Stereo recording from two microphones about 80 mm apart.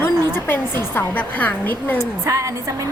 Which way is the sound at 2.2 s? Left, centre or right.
Right.